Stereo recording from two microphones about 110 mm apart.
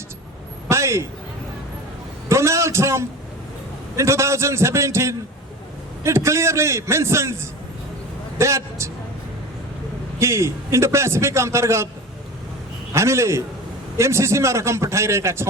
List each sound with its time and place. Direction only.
0.7 s a sound: 25° right (ahead or behind)
2.3 s a man's voice: 25° right (ahead or behind)
10.2 s a man's voice: 25° right (ahead or behind)
12.9 s a man's voice: 25° right (ahead or behind)